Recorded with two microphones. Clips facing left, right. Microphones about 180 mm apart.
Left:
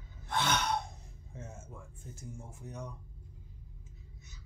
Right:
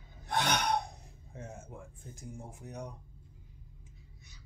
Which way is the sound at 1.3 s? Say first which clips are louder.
Right 2 dB; 60° right (ahead or behind).